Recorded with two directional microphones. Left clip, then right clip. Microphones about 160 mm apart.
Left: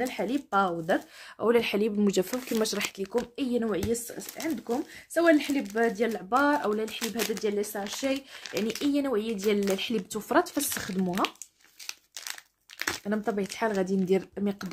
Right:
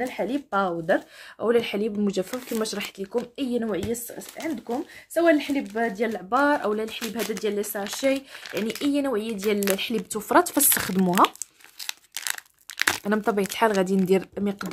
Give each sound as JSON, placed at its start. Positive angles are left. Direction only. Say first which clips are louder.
{"t": 0.0, "sound": "speech", "louder": "right 2 dB", "side_deg": 0}
{"t": 1.4, "sound": "speech", "louder": "right 2 dB", "side_deg": 10}
{"t": 2.6, "sound": "speech", "louder": "even", "side_deg": 5}
{"t": 3.3, "sound": "speech", "louder": "right 2 dB", "side_deg": -5}
{"t": 11.1, "sound": "speech", "louder": "right 10 dB", "side_deg": -25}
{"t": 11.8, "sound": "crumpling", "louder": "right 7 dB", "side_deg": -25}
{"t": 13.1, "sound": "speech", "louder": "right 6 dB", "side_deg": -35}
{"t": 14.3, "sound": "speech", "louder": "right 4 dB", "side_deg": -15}